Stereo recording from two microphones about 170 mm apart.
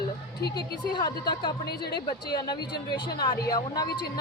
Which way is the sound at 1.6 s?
70° left (ahead or behind).